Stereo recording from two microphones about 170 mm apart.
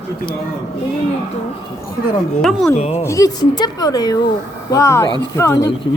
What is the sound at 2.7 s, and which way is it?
Speech, 40° left (ahead or behind).